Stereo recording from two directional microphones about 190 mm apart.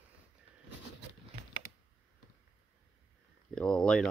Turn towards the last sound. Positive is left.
turn(degrees=5)  # may be behind; listen again after turning